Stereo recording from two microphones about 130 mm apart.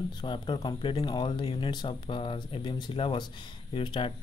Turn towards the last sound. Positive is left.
turn(degrees=40)  # may be behind; listen again after turning